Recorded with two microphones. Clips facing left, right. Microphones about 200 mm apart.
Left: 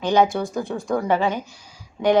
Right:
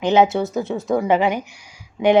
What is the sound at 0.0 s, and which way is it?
A woman's voice, 25° right (ahead or behind).